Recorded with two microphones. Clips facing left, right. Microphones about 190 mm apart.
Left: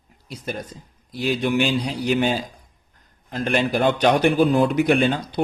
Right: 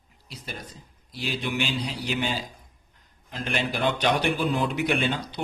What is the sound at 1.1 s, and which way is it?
A man's voice, 50° left (ahead or behind).